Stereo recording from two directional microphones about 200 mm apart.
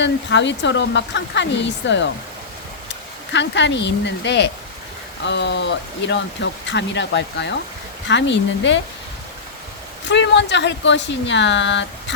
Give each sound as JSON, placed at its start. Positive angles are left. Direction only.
{"t": 0.0, "sound": "speech", "side_deg": 60}
{"t": 10.1, "sound": "speech", "side_deg": 65}